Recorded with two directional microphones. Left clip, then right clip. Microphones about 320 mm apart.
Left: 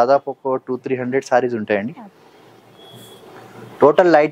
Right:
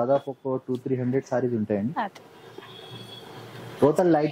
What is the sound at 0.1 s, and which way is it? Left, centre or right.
Speech, centre.